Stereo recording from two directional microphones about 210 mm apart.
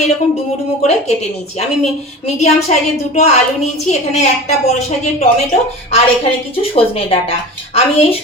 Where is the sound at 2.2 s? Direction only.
30° left (ahead or behind).